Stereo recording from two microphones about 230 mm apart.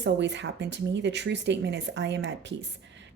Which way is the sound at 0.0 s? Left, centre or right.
Right.